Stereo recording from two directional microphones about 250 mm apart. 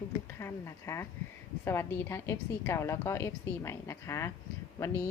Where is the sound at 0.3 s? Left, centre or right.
Centre.